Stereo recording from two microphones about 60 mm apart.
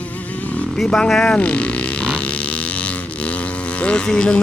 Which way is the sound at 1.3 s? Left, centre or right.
Centre.